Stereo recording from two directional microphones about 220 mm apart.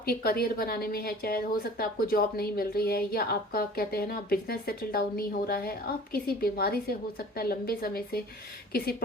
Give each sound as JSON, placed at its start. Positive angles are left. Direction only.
{"t": 0.0, "sound": "a woman's voice", "side_deg": 45}